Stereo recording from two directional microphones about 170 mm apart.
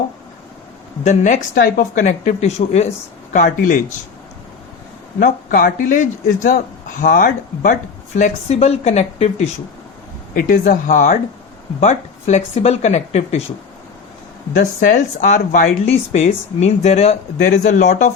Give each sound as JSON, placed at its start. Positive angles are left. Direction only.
{"t": 1.0, "sound": "speech", "side_deg": 45}
{"t": 3.3, "sound": "speech", "side_deg": 50}
{"t": 5.2, "sound": "speech", "side_deg": 55}
{"t": 10.3, "sound": "speech", "side_deg": 50}
{"t": 14.6, "sound": "speech", "side_deg": 50}
{"t": 15.9, "sound": "speech", "side_deg": 40}